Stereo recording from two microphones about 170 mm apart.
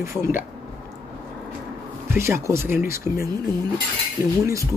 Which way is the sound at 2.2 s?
15° right (ahead or behind).